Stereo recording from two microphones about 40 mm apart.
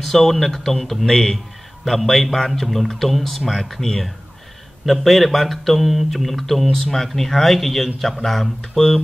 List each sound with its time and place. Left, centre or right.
0.0 s speech: centre